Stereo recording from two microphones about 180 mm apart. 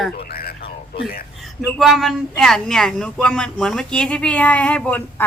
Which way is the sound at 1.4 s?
Centre (ahead or behind).